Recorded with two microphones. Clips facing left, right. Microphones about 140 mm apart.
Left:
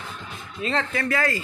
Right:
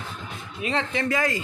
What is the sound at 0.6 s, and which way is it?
Speech, 15° right (ahead or behind).